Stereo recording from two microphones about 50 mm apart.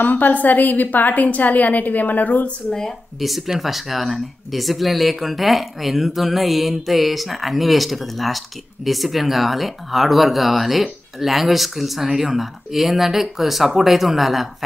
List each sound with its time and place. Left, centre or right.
0.0 s a woman's voice: left
3.2 s speech: centre